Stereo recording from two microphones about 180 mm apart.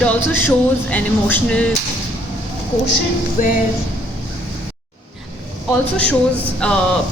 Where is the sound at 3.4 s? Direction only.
45° left (ahead or behind).